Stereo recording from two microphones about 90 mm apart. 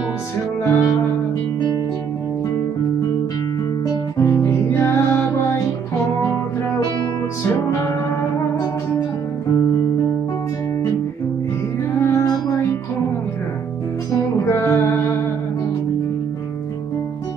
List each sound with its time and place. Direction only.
0.7 s music: 35° left (ahead or behind)
4.2 s music: 30° left (ahead or behind)
6.1 s music: 25° left (ahead or behind)
12.0 s music: 30° left (ahead or behind)
14.4 s music: 30° left (ahead or behind)